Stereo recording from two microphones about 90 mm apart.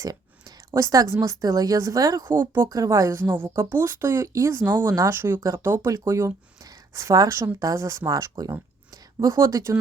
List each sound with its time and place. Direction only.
0.0 s a sound: 45° right (ahead or behind)
0.7 s speech: 35° right (ahead or behind)
2.3 s speech: 30° right (ahead or behind)
2.6 s speech: 40° right (ahead or behind)
4.6 s speech: 25° right (ahead or behind)